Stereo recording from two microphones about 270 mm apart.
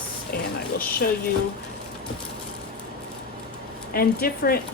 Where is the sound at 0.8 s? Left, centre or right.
Left.